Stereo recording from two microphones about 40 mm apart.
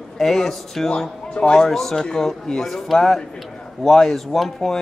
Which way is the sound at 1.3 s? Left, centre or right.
Left.